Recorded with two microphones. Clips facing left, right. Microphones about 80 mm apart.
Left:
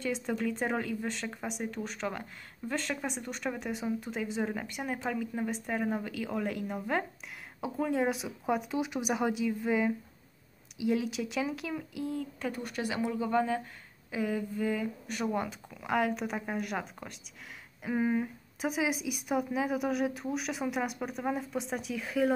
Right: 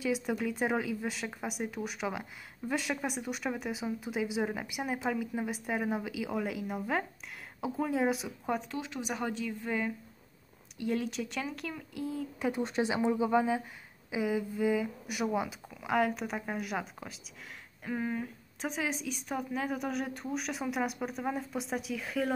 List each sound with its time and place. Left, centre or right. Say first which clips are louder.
0.0 s speech: even; centre
12.4 s speech: right 4 dB; centre
17.8 s speech: left 5 dB; centre